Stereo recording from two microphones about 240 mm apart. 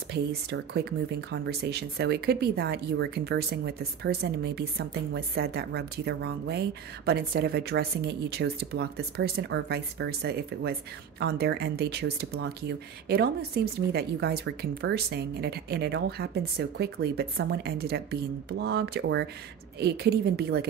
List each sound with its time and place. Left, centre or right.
0.1 s a woman's voice: right